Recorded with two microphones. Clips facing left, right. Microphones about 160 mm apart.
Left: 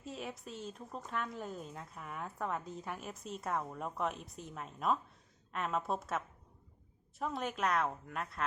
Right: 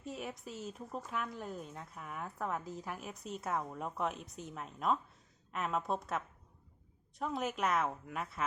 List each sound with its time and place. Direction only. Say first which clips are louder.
0.0 s speech: right 1 dB; centre (ahead or behind)